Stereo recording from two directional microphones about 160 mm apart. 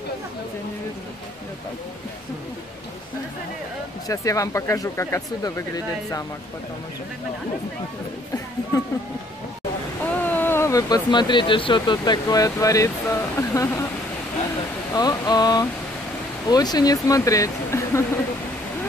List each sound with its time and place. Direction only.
4.1 s speech: 20° left (ahead or behind)
10.2 s speech: 10° left (ahead or behind)
15.0 s speech: 25° left (ahead or behind)